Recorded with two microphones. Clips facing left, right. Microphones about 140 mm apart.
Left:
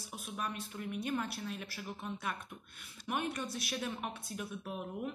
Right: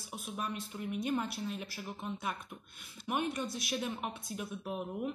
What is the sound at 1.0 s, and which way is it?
A woman's voice, 10° right (ahead or behind).